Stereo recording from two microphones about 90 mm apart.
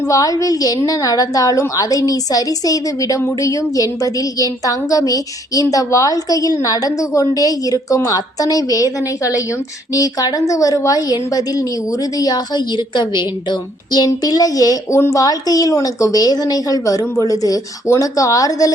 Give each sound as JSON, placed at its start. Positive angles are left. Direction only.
{"t": 0.1, "sound": "a woman's voice", "side_deg": 40}